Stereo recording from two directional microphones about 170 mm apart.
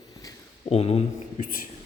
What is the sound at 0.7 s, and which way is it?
Speech, 35° left (ahead or behind).